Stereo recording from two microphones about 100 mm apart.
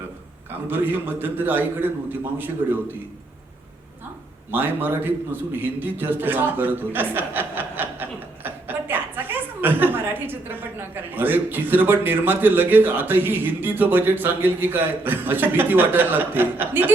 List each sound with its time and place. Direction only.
0.7 s a man's voice: 20° right (ahead or behind)
4.5 s a man's voice: 20° right (ahead or behind)